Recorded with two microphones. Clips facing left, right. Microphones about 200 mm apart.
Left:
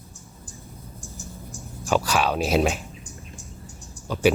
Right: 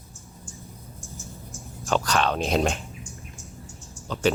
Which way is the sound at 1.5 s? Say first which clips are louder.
Left 2 dB; 15° left (ahead or behind).